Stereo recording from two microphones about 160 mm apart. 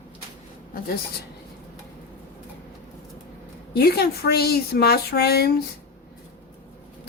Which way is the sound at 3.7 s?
80° left.